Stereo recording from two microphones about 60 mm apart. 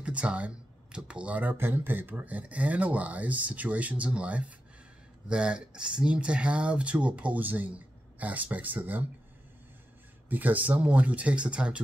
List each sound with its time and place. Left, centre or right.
0.0 s a sound: centre
0.9 s speech: centre
10.3 s speech: right